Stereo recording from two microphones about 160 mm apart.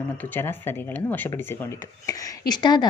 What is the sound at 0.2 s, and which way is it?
A woman's voice, 15° left (ahead or behind).